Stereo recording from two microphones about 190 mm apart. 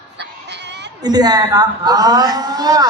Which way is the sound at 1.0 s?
20° right (ahead or behind).